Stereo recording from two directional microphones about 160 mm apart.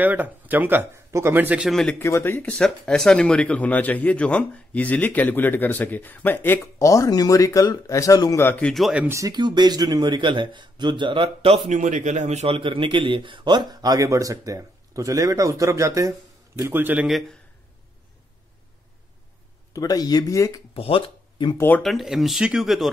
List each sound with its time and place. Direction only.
0.0 s speech: 10° right (ahead or behind)
2.0 s speech: 15° left (ahead or behind)
2.5 s speech: 5° left (ahead or behind)
9.0 s speech: 20° right (ahead or behind); by 17.4 s 5° right (ahead or behind)
19.7 s speech: 25° left (ahead or behind)
20.7 s speech: 35° left (ahead or behind)
21.5 s speech: 10° left (ahead or behind)
21.8 s speech: centre (ahead or behind)